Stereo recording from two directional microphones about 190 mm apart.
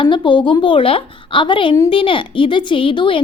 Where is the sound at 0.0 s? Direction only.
25° left (ahead or behind).